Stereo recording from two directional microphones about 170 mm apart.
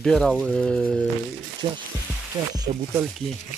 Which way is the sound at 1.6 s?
25° right (ahead or behind).